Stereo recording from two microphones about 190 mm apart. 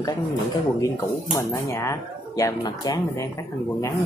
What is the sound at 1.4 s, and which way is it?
Speech, 15° left (ahead or behind).